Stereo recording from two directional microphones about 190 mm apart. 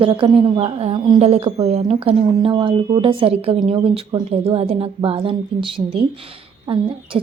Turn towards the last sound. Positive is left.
turn(degrees=-25)  # may be behind; listen again after turning